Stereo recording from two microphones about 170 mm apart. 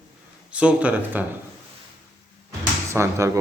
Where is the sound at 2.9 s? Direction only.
15° right (ahead or behind).